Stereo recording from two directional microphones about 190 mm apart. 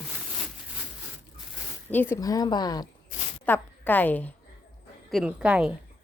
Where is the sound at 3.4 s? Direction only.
10° left (ahead or behind).